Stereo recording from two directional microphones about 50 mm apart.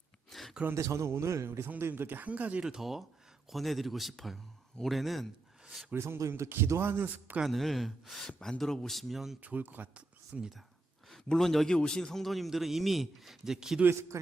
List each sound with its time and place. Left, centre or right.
0.3 s a sound: centre
0.7 s a man's voice: right
1.5 s speech: right
2.0 s speech: right
2.6 s a man's voice: centre
6.0 s a man's voice: right
6.7 s speech: right
7.4 s a man's voice: centre
9.4 s speech: right
10.3 s speech: centre
11.1 s a man's voice: centre